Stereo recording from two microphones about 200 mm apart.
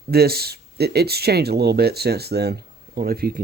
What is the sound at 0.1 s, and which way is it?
Speech, 50° right (ahead or behind).